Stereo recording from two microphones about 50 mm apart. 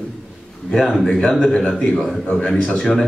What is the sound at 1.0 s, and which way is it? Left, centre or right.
A man's voice, centre.